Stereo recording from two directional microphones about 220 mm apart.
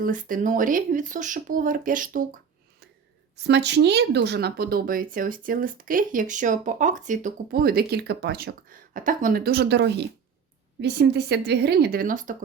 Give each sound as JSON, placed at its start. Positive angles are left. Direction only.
{"t": 0.0, "sound": "speech", "side_deg": -40}
{"t": 3.4, "sound": "speech", "side_deg": -50}